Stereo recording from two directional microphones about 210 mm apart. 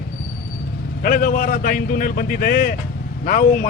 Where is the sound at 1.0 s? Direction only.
45° left (ahead or behind).